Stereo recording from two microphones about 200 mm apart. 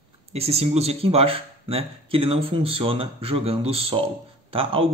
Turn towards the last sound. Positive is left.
turn(degrees=-30)  # may be behind; listen again after turning